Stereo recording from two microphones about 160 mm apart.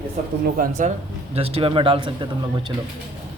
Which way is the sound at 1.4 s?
35° right (ahead or behind).